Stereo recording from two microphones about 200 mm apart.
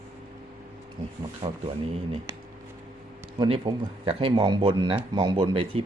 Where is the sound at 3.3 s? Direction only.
30° right (ahead or behind).